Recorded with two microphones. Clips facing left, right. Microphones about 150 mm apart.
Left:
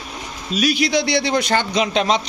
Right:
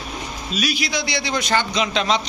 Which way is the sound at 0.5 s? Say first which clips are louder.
Left 7 dB; 50° left (ahead or behind).